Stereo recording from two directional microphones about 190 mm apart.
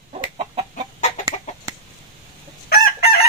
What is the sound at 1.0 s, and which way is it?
Chicken, 35° left (ahead or behind).